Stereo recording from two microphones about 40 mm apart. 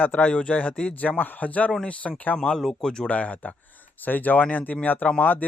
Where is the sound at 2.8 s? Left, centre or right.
Centre.